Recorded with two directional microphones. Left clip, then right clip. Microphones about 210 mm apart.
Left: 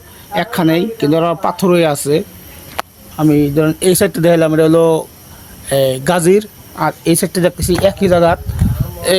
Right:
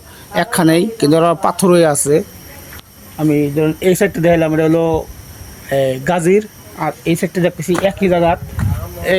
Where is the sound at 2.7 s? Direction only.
25° left (ahead or behind).